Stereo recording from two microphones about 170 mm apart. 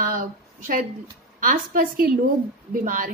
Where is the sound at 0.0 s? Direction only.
55° right (ahead or behind).